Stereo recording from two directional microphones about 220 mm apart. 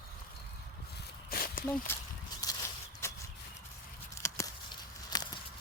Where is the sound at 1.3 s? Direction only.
40° left (ahead or behind).